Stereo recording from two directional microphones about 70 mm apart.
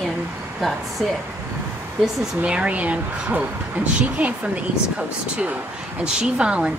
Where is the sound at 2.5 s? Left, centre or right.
Centre.